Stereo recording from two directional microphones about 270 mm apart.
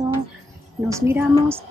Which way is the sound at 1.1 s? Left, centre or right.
Centre.